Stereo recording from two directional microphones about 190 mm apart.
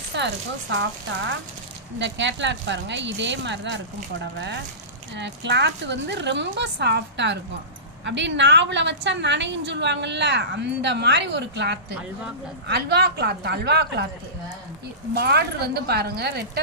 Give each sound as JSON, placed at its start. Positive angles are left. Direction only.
{"t": 0.1, "sound": "speech", "side_deg": -65}
{"t": 2.0, "sound": "a woman's voice", "side_deg": -70}
{"t": 15.1, "sound": "speech", "side_deg": -60}